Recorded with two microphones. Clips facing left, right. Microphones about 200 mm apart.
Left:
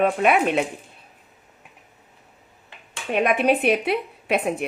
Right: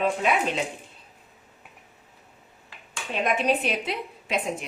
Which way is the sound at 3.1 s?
60° left (ahead or behind).